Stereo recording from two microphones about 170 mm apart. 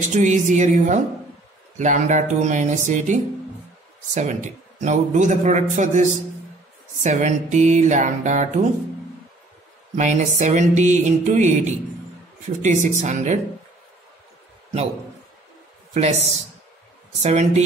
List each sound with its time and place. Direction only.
0.1 s a man's voice: 45° right (ahead or behind)
9.9 s a man's voice: 45° right (ahead or behind)
15.9 s speech: 40° right (ahead or behind)